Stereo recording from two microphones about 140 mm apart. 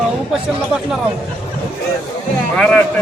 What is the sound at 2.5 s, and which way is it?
Speech, 5° left (ahead or behind).